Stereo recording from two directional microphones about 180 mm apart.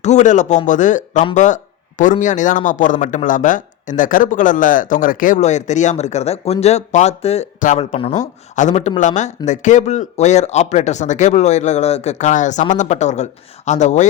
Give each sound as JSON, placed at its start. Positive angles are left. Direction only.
{"t": 0.0, "sound": "speech", "side_deg": 40}